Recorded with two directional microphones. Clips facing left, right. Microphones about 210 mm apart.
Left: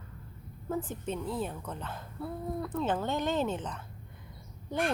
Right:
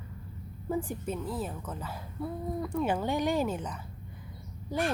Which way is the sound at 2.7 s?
10° right (ahead or behind).